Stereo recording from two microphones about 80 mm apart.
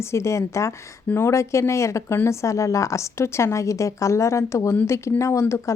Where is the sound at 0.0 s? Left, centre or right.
Left.